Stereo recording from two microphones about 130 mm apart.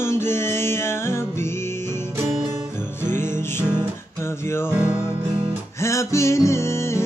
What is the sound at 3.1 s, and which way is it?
Music, 20° left (ahead or behind).